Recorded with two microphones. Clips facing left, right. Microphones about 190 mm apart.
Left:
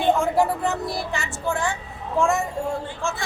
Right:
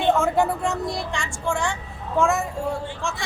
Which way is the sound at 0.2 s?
Centre (ahead or behind).